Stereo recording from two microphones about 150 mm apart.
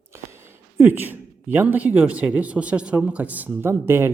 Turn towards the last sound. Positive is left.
turn(degrees=-15)  # may be behind; listen again after turning